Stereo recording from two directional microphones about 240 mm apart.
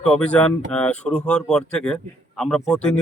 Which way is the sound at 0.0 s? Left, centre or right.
Centre.